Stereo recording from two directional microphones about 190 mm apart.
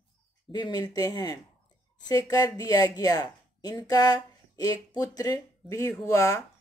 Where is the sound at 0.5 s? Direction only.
20° left (ahead or behind).